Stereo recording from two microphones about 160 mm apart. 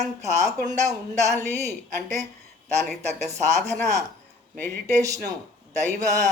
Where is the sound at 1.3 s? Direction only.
15° left (ahead or behind).